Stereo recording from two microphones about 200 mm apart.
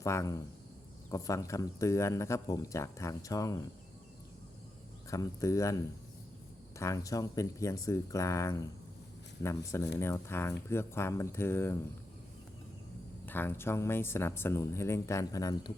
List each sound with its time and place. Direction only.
0.0 s speech: 15° left (ahead or behind)
5.1 s speech: 15° left (ahead or behind)
13.2 s speech: 10° left (ahead or behind)